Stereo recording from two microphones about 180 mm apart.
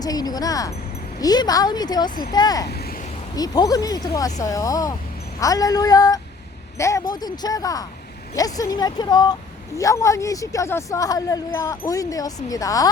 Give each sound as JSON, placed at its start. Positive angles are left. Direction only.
{"t": 0.0, "sound": "a woman's voice", "side_deg": 20}